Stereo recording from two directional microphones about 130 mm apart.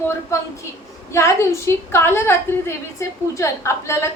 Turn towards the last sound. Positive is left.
turn(degrees=20)  # may be behind; listen again after turning